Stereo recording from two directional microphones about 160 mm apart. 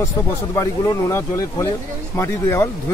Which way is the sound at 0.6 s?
15° left (ahead or behind).